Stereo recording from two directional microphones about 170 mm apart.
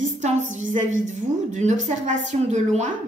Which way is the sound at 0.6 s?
45° right (ahead or behind).